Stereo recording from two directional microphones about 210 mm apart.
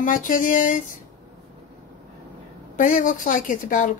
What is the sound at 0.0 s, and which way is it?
Speech, 40° left (ahead or behind).